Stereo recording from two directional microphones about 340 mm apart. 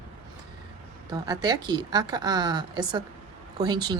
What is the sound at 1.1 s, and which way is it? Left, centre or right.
Speech, centre.